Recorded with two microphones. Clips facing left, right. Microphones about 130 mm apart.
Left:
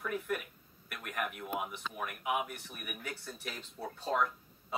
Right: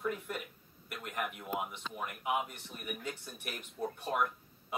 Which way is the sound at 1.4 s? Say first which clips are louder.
Even; centre (ahead or behind).